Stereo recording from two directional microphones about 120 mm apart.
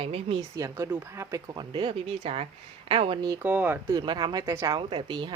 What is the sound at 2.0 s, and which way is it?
A woman's voice, 55° right (ahead or behind).